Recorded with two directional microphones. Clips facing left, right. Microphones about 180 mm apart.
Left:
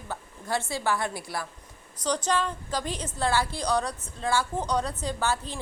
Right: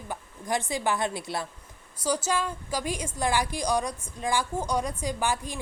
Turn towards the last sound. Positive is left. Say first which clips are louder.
# even
turn(degrees=-15)  # may be behind; listen again after turning